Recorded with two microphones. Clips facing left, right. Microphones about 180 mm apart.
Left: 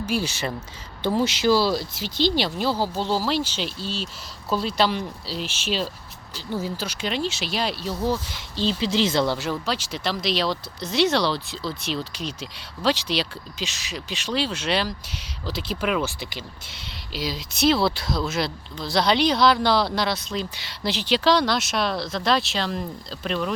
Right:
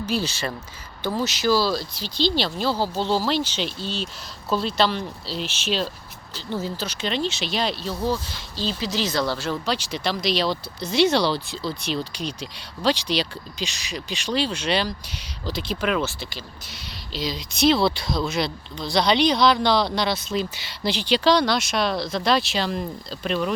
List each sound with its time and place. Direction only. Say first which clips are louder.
0.1 s speech: even; 15° left (ahead or behind)
1.0 s speech: left 2 dB; 30° left (ahead or behind); by 7.9 s 10° left (ahead or behind)
8.0 s speech: even; 20° left (ahead or behind)
9.5 s speech: right 1 dB; 5° left (ahead or behind); by 16.9 s 25° left (ahead or behind)
17.1 s speech: right 1 dB; 5° left (ahead or behind)